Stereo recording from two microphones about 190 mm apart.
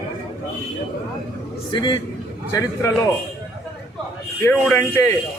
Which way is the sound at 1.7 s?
25° left (ahead or behind).